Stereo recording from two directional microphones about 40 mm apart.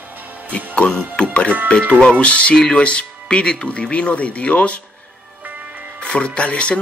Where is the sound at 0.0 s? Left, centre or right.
Right.